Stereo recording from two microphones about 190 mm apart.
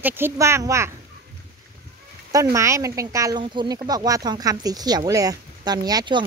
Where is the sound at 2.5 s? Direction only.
15° right (ahead or behind).